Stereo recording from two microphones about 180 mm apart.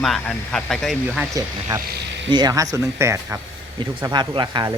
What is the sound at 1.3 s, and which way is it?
Speech, 20° right (ahead or behind).